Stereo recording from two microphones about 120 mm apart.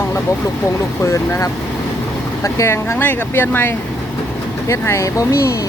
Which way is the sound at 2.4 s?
25° left (ahead or behind).